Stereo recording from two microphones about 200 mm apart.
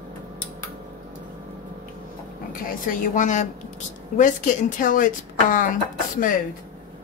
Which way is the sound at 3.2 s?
40° left (ahead or behind).